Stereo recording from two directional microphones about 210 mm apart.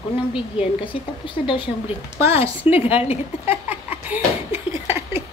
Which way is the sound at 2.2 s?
10° right (ahead or behind).